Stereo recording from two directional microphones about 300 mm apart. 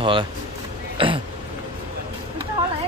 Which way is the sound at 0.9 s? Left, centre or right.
Centre.